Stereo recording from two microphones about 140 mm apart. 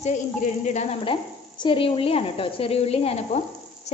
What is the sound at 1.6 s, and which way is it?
A woman's voice, 40° left (ahead or behind).